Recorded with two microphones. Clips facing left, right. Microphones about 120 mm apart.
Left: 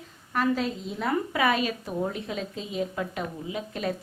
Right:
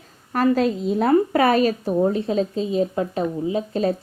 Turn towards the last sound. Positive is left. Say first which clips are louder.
# right 9 dB
turn(degrees=-35)  # may be behind; listen again after turning